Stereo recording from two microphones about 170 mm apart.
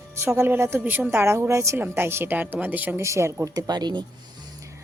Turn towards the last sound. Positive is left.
turn(degrees=-25)  # may be behind; listen again after turning